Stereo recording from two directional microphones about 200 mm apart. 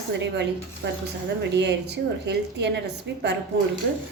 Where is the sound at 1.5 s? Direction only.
60° right (ahead or behind).